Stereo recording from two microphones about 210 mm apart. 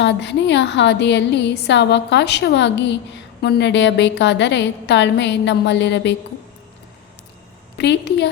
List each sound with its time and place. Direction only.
0.0 s a woman's voice: 55° left (ahead or behind)
7.8 s a woman's voice: 55° left (ahead or behind)